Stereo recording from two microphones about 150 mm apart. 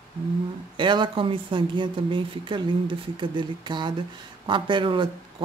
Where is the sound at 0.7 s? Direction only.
30° right (ahead or behind).